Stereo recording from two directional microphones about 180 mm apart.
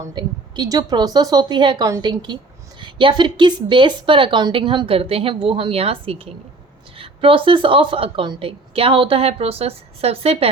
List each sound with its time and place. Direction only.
0.0 s speech: 25° right (ahead or behind)